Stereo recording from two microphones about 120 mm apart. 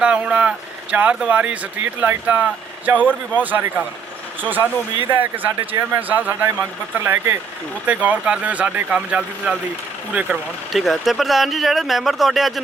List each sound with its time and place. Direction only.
0.0 s speech: 10° right (ahead or behind)
10.7 s speech: centre (ahead or behind)